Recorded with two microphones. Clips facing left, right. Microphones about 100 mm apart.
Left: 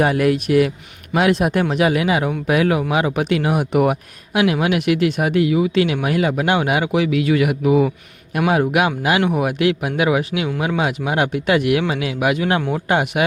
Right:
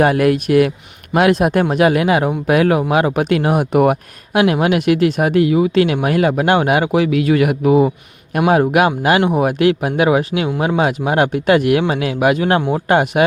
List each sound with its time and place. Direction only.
0.0 s speech: 55° right (ahead or behind)
9.2 s speech: 35° right (ahead or behind)